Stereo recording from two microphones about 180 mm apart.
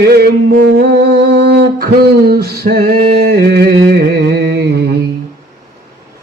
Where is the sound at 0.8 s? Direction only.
60° right (ahead or behind).